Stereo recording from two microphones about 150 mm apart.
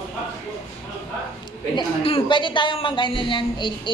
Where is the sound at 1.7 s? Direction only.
35° left (ahead or behind).